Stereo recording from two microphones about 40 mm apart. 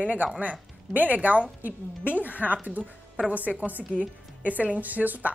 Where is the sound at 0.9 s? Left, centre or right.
Right.